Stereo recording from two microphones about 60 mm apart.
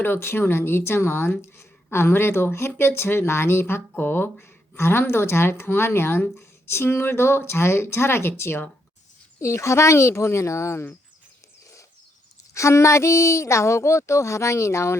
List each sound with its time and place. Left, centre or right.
0.0 s speech: left
9.4 s speech: left
12.5 s speech: left